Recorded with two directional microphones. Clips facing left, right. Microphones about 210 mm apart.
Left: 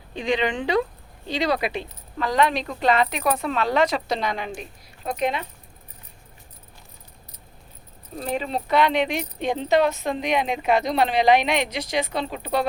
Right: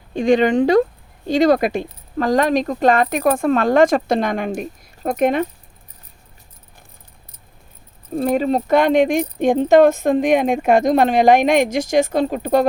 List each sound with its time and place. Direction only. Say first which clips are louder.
0.1 s speech: right 9 dB; 45° right (ahead or behind)
8.1 s speech: right 10 dB; 45° right (ahead or behind)